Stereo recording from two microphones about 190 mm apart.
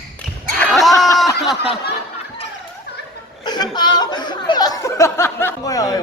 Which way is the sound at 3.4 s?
20° left (ahead or behind).